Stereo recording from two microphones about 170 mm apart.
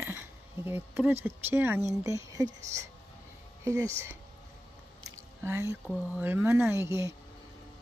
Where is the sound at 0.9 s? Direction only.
10° right (ahead or behind).